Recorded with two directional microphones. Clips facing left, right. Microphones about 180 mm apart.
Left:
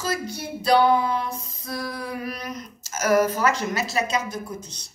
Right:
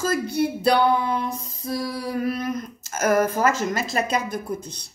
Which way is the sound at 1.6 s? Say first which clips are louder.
Right 4 dB; 35° right (ahead or behind).